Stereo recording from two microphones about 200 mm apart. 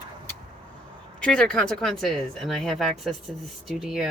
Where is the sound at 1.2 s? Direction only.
5° left (ahead or behind).